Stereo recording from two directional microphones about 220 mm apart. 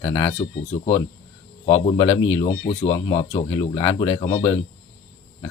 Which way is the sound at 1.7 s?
20° left (ahead or behind).